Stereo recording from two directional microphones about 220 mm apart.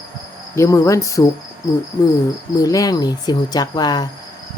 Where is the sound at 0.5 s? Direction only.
15° left (ahead or behind).